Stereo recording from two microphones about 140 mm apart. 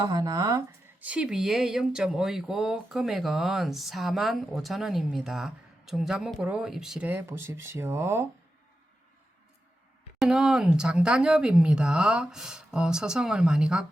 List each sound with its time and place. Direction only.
0.0 s speech: 30° right (ahead or behind)
1.0 s speech: 5° right (ahead or behind)
10.2 s speech: 5° right (ahead or behind)